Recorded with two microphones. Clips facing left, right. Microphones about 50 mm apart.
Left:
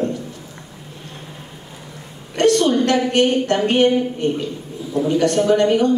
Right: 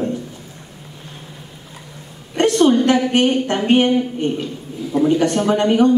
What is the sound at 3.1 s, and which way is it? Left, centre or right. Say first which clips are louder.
A man's voice: even; centre.